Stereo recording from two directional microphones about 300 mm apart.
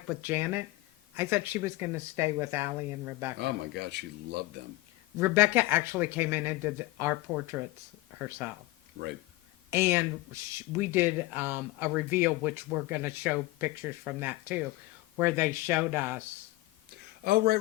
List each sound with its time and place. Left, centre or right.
0.1 s speech: centre
3.3 s a man's voice: right
5.2 s speech: centre
9.6 s speech: centre
17.2 s a man's voice: right